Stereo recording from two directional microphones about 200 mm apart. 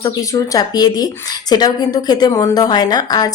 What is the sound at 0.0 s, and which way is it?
Speech, 15° left (ahead or behind).